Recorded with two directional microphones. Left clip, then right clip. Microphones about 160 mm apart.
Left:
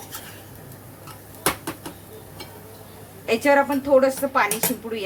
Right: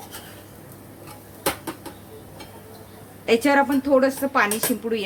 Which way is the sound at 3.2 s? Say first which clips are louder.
Even; 45° right (ahead or behind).